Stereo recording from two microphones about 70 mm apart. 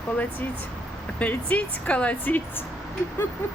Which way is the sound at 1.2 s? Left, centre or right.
Left.